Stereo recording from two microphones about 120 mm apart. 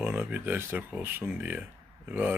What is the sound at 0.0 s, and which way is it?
Speech, 10° right (ahead or behind).